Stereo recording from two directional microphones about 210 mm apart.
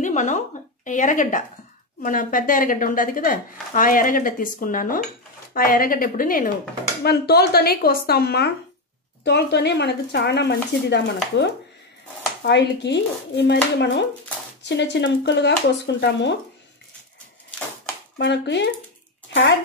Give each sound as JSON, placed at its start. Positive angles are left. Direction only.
{"t": 0.0, "sound": "a sound", "side_deg": 35}
{"t": 0.8, "sound": "speech", "side_deg": 35}
{"t": 18.1, "sound": "speech", "side_deg": 55}